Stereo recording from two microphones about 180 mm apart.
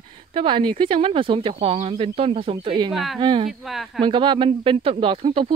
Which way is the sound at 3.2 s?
25° right (ahead or behind).